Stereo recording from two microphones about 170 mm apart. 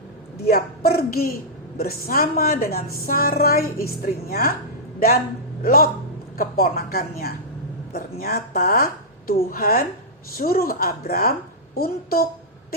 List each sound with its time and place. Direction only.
0.4 s a woman's voice: 65° left (ahead or behind)